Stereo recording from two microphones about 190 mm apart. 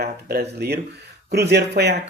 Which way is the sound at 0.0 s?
55° right (ahead or behind).